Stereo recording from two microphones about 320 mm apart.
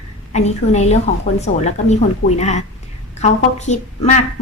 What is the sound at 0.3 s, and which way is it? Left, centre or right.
A woman's voice, left.